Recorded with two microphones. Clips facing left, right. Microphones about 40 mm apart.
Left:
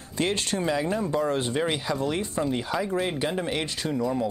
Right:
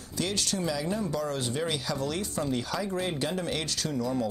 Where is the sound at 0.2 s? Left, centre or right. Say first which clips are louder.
Left 4 dB; left.